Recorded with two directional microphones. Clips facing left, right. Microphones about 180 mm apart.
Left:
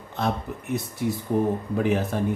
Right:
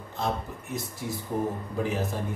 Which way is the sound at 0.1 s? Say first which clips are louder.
Left 4 dB; 65° left (ahead or behind).